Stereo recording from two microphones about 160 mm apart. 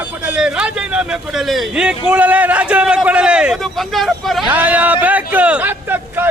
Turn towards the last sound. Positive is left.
turn(degrees=-10)  # may be behind; listen again after turning